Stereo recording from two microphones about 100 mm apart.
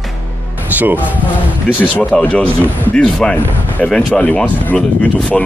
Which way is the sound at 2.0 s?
15° left (ahead or behind).